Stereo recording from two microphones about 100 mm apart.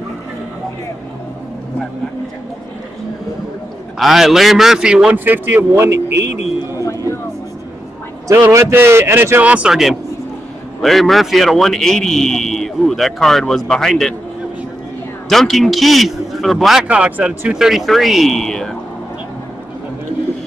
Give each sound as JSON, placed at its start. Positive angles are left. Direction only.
{"t": 4.0, "sound": "a man's voice", "side_deg": -5}
{"t": 8.3, "sound": "speech", "side_deg": -30}
{"t": 9.4, "sound": "a man's voice", "side_deg": -10}
{"t": 15.2, "sound": "a man's voice", "side_deg": 0}
{"t": 16.8, "sound": "a man's voice", "side_deg": -10}